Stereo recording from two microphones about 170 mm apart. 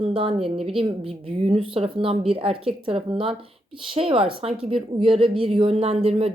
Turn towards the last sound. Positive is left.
turn(degrees=-35)  # may be behind; listen again after turning